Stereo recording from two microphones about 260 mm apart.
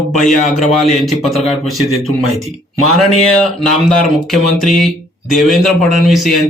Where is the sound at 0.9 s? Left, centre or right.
Centre.